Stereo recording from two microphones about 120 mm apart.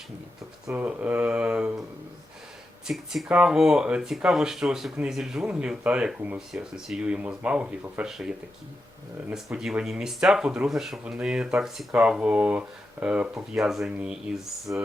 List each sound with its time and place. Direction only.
0.7 s speech: 15° right (ahead or behind)
2.8 s speech: 5° right (ahead or behind)
9.3 s speech: 5° right (ahead or behind)
14.7 s speech: 15° right (ahead or behind)